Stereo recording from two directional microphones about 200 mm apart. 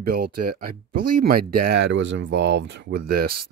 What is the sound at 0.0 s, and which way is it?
Speech, 50° right (ahead or behind).